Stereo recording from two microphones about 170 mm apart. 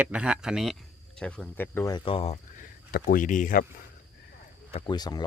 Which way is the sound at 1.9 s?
30° left (ahead or behind).